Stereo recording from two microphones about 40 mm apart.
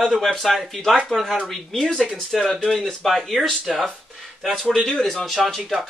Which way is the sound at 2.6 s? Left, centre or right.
Centre.